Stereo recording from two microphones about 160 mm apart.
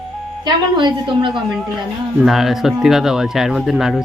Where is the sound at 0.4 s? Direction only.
30° right (ahead or behind).